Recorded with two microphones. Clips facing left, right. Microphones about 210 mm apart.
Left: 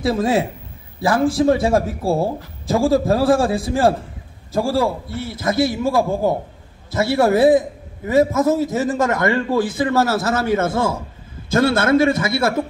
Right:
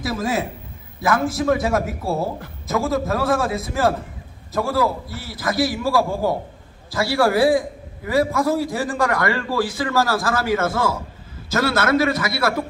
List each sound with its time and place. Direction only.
0.0 s a man's voice: 30° left (ahead or behind)